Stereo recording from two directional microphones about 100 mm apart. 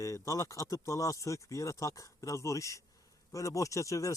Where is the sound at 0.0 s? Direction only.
30° left (ahead or behind).